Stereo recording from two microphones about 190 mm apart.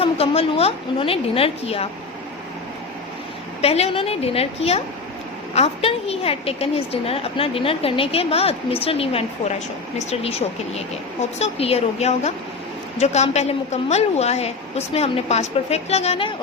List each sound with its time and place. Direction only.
0.0 s a woman's voice: 30° left (ahead or behind)
3.6 s a woman's voice: 30° left (ahead or behind)